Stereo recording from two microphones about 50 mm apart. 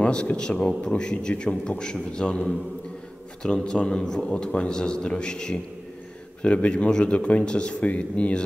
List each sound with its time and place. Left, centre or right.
0.0 s a man's voice: left
3.4 s a man's voice: centre